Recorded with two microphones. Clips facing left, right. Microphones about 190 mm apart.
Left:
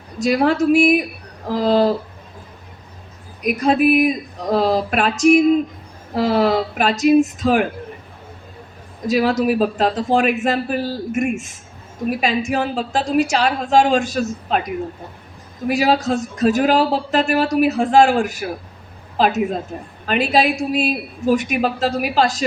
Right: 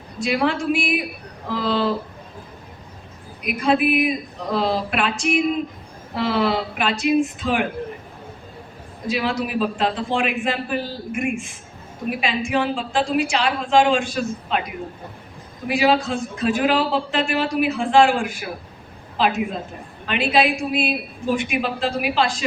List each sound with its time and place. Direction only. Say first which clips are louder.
0.2 s speech: left 5 dB; 40° left (ahead or behind)
3.4 s speech: left 4 dB; 40° left (ahead or behind)
9.0 s speech: left 7 dB; 40° left (ahead or behind)
15.6 s a woman's voice: left 2 dB; 40° left (ahead or behind)